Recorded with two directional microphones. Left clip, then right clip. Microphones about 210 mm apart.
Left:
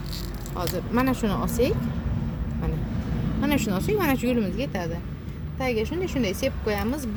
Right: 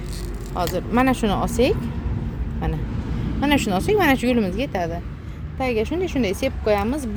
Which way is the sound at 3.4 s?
35° right (ahead or behind).